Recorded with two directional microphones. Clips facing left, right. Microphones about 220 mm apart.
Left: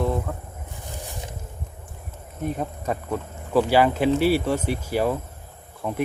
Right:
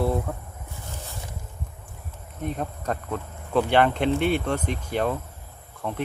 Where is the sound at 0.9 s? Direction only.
15° left (ahead or behind).